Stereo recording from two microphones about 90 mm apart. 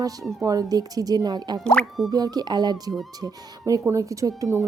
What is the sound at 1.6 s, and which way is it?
Speech, 10° left (ahead or behind).